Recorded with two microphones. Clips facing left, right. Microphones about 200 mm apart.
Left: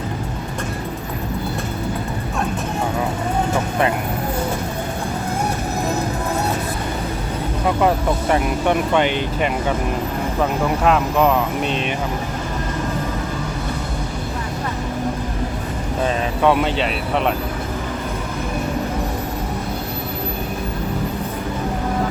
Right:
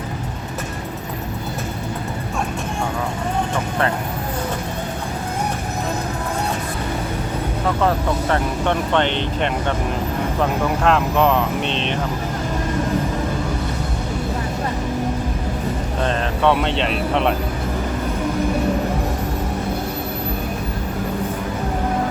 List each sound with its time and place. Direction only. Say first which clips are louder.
3.5 s vehicle: left 2 dB; 10° left (ahead or behind)
7.8 s speech: left 2 dB; 15° left (ahead or behind)
16.0 s speech: left 1 dB; 5° left (ahead or behind)